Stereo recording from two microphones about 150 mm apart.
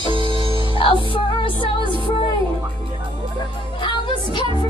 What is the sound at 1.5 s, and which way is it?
Music, 35° right (ahead or behind).